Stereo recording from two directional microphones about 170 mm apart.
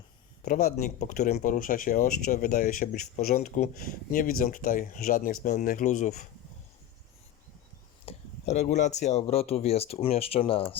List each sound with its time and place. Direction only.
0.4 s speech: 50° left (ahead or behind)
8.0 s a sound: 40° left (ahead or behind)
8.6 s speech: 45° left (ahead or behind)